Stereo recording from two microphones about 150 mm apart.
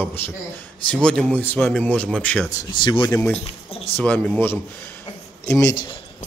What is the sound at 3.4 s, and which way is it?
Speech, 40° left (ahead or behind).